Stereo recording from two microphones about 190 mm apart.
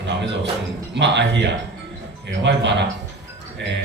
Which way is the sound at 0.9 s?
70° right (ahead or behind).